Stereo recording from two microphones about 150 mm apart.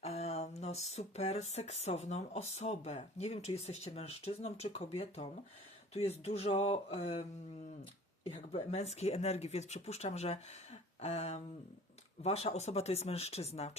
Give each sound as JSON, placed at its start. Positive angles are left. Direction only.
{"t": 0.0, "sound": "speech", "side_deg": 45}